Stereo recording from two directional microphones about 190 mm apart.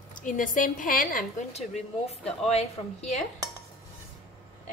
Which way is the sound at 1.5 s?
35° left (ahead or behind).